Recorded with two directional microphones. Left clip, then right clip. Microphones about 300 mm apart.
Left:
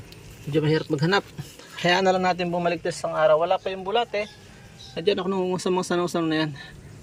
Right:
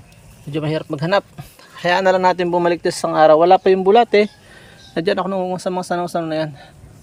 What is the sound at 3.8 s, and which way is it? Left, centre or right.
Speech, right.